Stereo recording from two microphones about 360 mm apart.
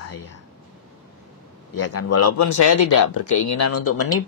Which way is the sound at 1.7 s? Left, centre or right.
Left.